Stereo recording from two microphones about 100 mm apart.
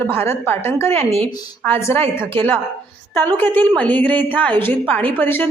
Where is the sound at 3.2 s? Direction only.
20° left (ahead or behind).